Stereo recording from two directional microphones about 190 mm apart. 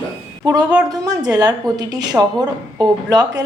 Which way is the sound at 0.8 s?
20° right (ahead or behind).